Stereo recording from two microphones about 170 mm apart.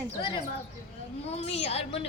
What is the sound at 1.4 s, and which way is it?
Speech, 35° left (ahead or behind).